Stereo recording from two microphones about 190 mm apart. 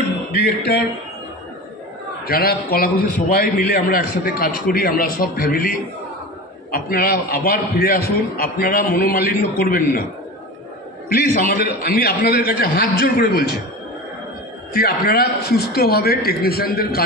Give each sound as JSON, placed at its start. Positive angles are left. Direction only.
{"t": 2.2, "sound": "a man's voice", "side_deg": 50}
{"t": 6.7, "sound": "a man's voice", "side_deg": 50}
{"t": 11.1, "sound": "a man's voice", "side_deg": 50}
{"t": 14.7, "sound": "a man's voice", "side_deg": 55}